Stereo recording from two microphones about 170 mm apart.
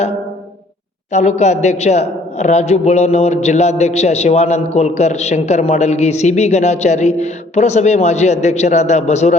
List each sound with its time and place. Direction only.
1.1 s a man's voice: 40° left (ahead or behind)